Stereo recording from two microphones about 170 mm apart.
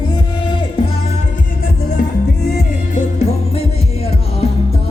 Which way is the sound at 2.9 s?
40° left (ahead or behind).